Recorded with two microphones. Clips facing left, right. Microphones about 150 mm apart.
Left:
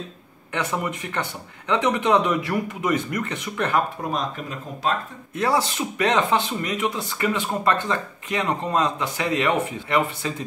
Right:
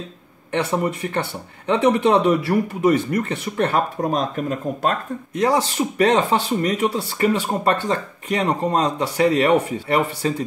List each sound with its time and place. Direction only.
0.5 s speech: 30° right (ahead or behind)
4.0 s speech: 45° right (ahead or behind)
5.3 s speech: 20° right (ahead or behind)
5.8 s speech: 35° right (ahead or behind)